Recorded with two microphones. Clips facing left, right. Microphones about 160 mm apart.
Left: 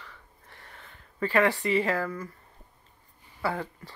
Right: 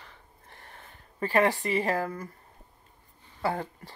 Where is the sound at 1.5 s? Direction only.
45° right (ahead or behind).